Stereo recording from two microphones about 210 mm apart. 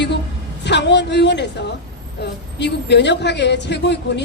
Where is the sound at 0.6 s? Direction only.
55° left (ahead or behind).